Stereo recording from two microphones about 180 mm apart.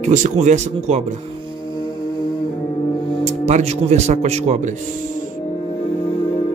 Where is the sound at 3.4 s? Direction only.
40° right (ahead or behind).